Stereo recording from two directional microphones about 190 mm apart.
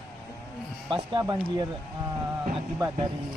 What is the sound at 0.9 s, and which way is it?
Speech, 25° right (ahead or behind).